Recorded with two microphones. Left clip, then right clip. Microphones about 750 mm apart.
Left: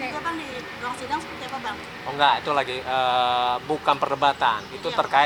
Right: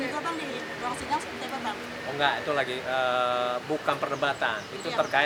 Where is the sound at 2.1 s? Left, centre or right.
Left.